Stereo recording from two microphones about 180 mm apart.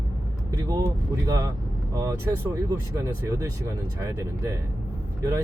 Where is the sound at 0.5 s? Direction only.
20° right (ahead or behind).